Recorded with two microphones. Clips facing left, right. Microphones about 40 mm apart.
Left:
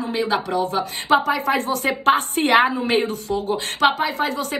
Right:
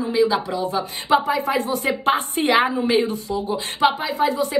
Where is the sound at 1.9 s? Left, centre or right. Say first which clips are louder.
Left 3 dB; left.